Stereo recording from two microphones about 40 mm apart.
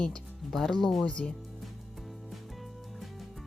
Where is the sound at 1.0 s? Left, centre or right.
Left.